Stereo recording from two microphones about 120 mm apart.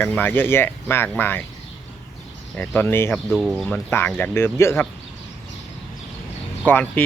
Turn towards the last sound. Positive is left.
turn(degrees=15)  # may be behind; listen again after turning